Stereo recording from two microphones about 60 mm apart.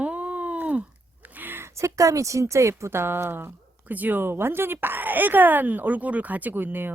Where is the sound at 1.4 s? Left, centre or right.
Right.